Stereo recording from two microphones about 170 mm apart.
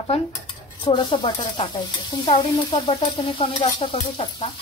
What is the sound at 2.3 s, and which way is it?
Stir, 35° left (ahead or behind).